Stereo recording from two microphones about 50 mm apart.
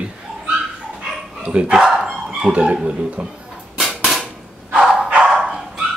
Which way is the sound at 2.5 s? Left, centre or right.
Right.